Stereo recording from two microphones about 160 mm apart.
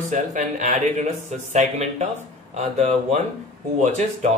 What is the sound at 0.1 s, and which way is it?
A man's voice, 50° right (ahead or behind).